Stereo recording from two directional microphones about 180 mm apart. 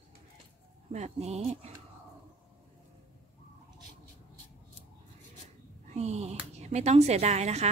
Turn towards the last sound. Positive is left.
turn(degrees=-35)  # may be behind; listen again after turning